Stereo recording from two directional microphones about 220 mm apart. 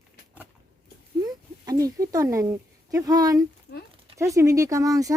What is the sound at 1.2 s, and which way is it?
Speech, 15° right (ahead or behind).